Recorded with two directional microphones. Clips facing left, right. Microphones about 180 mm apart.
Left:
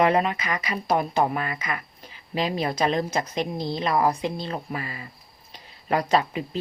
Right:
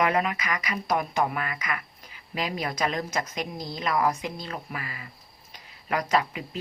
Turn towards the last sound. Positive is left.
turn(degrees=30)  # may be behind; listen again after turning